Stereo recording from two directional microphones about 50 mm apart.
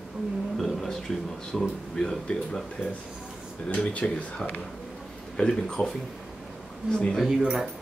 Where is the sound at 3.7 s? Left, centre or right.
Left.